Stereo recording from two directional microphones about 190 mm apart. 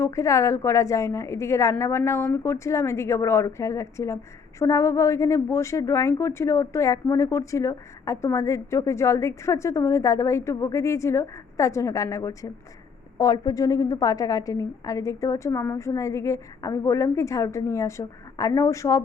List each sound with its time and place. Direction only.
0.0 s a woman's voice: 15° left (ahead or behind)